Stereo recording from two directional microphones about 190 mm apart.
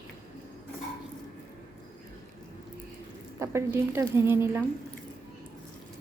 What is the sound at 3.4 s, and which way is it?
A woman's voice, 15° right (ahead or behind).